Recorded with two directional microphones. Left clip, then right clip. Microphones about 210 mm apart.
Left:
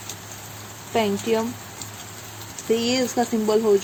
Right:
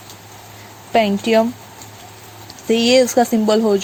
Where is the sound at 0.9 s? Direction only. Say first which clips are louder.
Right 7 dB; 40° right (ahead or behind).